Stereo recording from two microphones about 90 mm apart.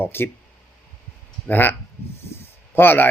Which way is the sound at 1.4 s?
20° left (ahead or behind).